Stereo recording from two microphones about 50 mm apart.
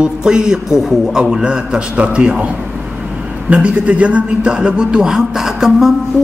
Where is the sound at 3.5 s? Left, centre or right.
Right; by 5.9 s centre.